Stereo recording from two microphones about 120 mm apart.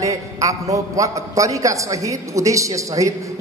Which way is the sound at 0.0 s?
25° right (ahead or behind).